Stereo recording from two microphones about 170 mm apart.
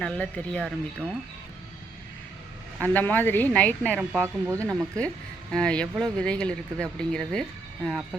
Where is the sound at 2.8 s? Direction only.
10° left (ahead or behind).